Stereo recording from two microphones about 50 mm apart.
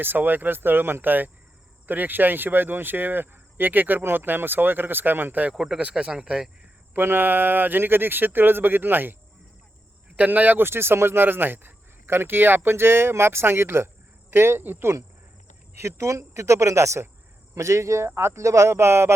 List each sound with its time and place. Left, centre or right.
0.0 s speech: right
5.5 s speech: centre
6.9 s speech: right
10.2 s speech: right
10.7 s speech: right
15.8 s speech: right
17.5 s speech: right